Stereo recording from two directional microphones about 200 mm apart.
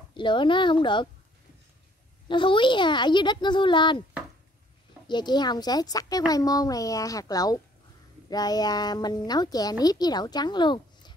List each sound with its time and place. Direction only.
0.1 s a woman's voice: 25° left (ahead or behind)
2.2 s a woman's voice: 25° left (ahead or behind)
5.0 s a woman's voice: 20° left (ahead or behind)